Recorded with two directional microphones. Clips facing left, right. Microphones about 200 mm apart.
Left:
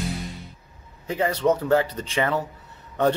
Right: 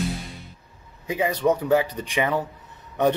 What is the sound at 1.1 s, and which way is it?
Speech, 15° right (ahead or behind).